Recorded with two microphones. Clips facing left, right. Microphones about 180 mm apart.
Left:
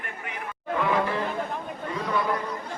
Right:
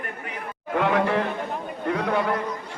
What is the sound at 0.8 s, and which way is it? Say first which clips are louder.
Speech: right 4 dB; 70° right (ahead or behind).